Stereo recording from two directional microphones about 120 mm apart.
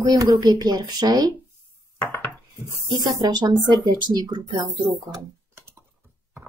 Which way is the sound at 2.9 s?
35° right (ahead or behind).